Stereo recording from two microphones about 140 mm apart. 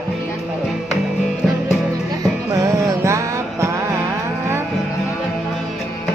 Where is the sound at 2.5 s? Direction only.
20° right (ahead or behind).